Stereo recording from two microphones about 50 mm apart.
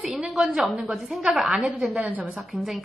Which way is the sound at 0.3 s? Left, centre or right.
Centre.